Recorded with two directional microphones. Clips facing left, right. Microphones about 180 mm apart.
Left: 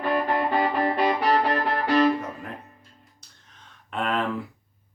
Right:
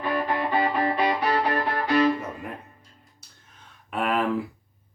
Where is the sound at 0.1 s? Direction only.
45° left (ahead or behind).